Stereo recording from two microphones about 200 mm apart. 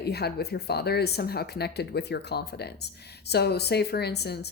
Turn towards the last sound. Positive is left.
turn(degrees=55)  # may be behind; listen again after turning